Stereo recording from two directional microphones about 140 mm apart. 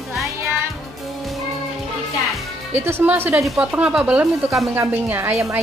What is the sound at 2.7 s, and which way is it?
Speech, 15° right (ahead or behind).